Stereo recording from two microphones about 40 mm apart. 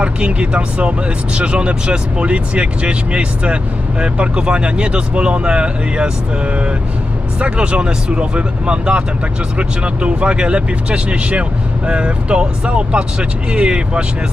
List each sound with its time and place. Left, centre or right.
0.0 s speech: right